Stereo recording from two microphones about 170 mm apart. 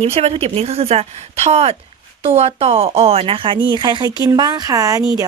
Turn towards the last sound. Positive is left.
turn(degrees=-20)  # may be behind; listen again after turning